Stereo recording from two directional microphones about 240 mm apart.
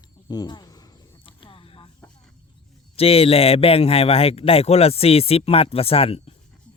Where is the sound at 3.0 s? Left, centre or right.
Left.